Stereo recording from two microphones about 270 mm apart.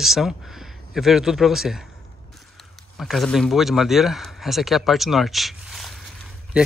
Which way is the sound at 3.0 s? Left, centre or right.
Centre.